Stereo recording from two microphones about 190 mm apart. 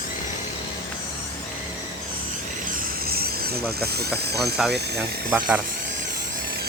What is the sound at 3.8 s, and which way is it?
Speech, 55° right (ahead or behind).